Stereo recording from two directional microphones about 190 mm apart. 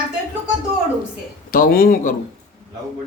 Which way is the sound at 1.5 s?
50° left (ahead or behind).